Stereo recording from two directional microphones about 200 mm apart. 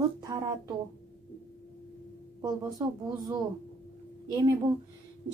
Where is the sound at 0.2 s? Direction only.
20° right (ahead or behind).